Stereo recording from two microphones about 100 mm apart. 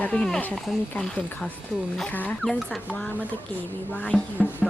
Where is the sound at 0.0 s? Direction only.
10° left (ahead or behind).